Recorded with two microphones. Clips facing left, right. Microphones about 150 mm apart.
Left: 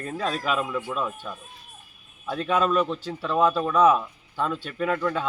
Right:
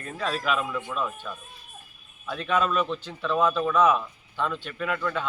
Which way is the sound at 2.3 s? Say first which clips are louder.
Left 2 dB; 30° left (ahead or behind).